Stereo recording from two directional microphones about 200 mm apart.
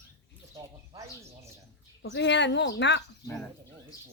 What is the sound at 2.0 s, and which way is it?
Speech, 60° left (ahead or behind).